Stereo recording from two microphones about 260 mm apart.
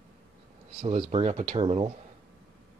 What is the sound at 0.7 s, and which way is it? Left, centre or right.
Speech, right.